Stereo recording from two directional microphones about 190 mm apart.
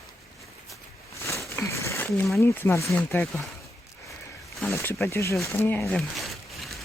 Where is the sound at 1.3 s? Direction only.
15° left (ahead or behind).